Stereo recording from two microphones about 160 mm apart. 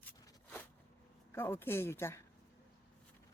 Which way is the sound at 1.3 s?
15° left (ahead or behind).